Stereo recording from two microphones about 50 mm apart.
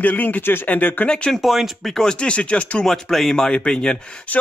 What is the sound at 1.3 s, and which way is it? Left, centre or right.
Speech, centre.